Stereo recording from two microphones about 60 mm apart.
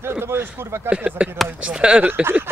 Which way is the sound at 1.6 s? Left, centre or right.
Centre.